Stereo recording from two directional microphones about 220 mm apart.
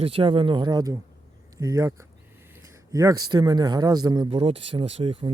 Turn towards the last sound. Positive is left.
turn(degrees=-25)  # may be behind; listen again after turning